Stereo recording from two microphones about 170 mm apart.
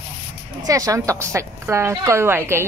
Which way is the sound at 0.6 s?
20° right (ahead or behind).